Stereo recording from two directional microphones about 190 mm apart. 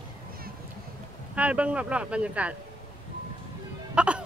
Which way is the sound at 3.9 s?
5° right (ahead or behind).